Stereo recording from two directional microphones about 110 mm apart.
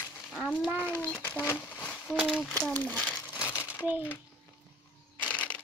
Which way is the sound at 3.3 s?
25° left (ahead or behind).